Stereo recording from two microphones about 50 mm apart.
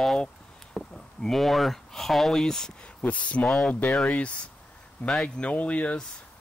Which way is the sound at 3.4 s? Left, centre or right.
Centre.